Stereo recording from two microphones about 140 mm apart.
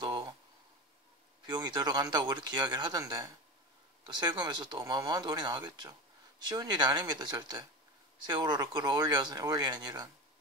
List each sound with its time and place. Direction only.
1.4 s speech: 30° right (ahead or behind)